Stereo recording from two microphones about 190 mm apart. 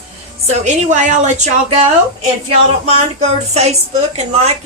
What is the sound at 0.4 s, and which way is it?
Speech, 35° right (ahead or behind).